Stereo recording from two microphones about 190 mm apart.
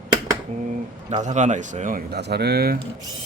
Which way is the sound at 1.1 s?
35° right (ahead or behind).